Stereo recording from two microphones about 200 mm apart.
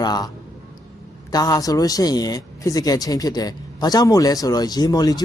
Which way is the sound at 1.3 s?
20° left (ahead or behind).